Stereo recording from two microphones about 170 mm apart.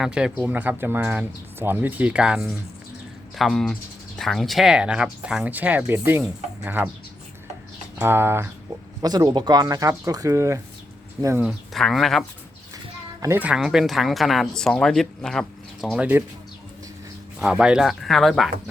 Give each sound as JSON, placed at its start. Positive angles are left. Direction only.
{"t": 0.0, "sound": "speech", "side_deg": -5}
{"t": 7.9, "sound": "speech", "side_deg": -15}
{"t": 11.4, "sound": "speech", "side_deg": 0}
{"t": 13.2, "sound": "speech", "side_deg": -10}
{"t": 17.4, "sound": "speech", "side_deg": -5}